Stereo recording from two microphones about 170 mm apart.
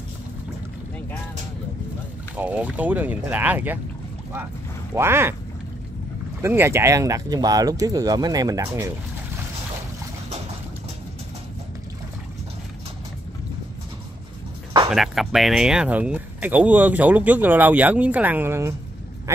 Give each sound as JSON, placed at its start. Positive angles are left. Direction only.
{"t": 2.3, "sound": "speech", "side_deg": -10}
{"t": 4.9, "sound": "speech", "side_deg": -15}
{"t": 6.4, "sound": "speech", "side_deg": -15}
{"t": 14.9, "sound": "speech", "side_deg": 0}